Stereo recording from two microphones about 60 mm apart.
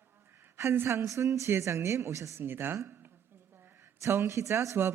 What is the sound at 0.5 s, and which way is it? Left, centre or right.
A woman's voice, right.